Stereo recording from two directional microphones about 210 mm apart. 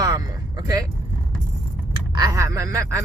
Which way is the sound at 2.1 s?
15° right (ahead or behind).